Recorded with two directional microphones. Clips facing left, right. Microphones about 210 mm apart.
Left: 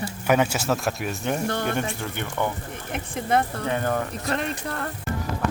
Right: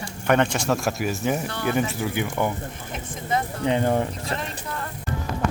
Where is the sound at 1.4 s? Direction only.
45° left (ahead or behind).